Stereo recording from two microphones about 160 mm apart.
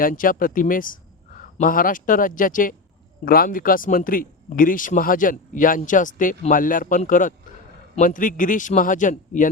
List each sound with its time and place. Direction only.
0.0 s speech: 60° left (ahead or behind)